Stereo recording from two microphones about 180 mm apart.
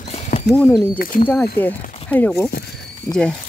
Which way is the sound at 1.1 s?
50° left (ahead or behind).